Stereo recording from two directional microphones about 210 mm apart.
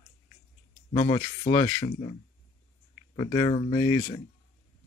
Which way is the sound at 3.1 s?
20° left (ahead or behind).